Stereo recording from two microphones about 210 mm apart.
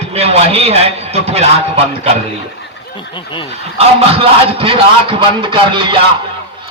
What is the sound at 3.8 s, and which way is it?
A man's voice, 30° right (ahead or behind).